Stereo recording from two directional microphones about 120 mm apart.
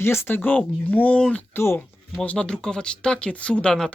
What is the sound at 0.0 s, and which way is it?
Speech, 20° left (ahead or behind).